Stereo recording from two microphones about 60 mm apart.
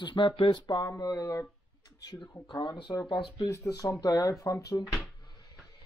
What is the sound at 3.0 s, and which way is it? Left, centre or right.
Speech, left.